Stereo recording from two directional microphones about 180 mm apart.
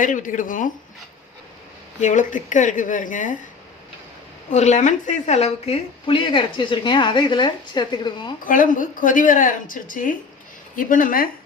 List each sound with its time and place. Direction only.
0.0 s a woman's voice: 45° left (ahead or behind)
2.0 s a woman's voice: 45° left (ahead or behind)
4.5 s a woman's voice: 40° left (ahead or behind); by 8.3 s 25° left (ahead or behind)
8.4 s a woman's voice: 50° left (ahead or behind)